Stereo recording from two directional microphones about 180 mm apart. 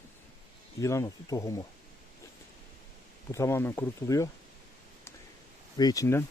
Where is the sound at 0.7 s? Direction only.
15° left (ahead or behind).